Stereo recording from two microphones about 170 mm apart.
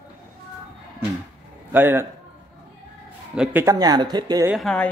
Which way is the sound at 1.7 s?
15° right (ahead or behind).